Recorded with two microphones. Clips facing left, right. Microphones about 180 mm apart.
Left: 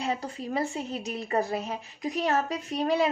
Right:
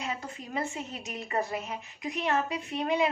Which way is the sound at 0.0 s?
35° left (ahead or behind).